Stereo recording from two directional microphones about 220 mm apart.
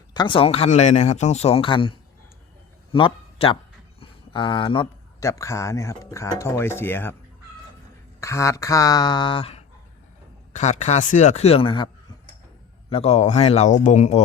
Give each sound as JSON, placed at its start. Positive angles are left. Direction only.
{"t": 0.1, "sound": "speech", "side_deg": 20}
{"t": 8.2, "sound": "speech", "side_deg": 15}
{"t": 12.9, "sound": "speech", "side_deg": 30}